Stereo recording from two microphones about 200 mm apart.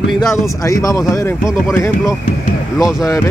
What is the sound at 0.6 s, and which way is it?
Speech, 15° left (ahead or behind).